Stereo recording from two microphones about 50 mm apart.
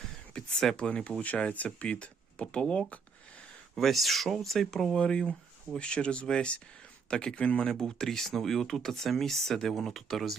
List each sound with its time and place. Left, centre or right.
0.3 s speech: centre
3.8 s speech: centre
4.9 s speech: centre
7.7 s speech: centre